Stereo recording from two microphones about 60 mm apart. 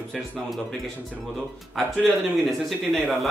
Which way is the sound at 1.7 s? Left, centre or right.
Centre.